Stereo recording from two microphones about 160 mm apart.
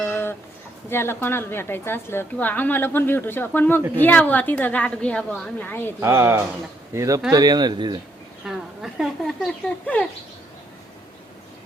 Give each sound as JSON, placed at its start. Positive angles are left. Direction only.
{"t": 0.0, "sound": "a sound", "side_deg": 15}
{"t": 0.9, "sound": "a woman's voice", "side_deg": 15}
{"t": 6.0, "sound": "speech", "side_deg": -20}
{"t": 8.4, "sound": "speech", "side_deg": 0}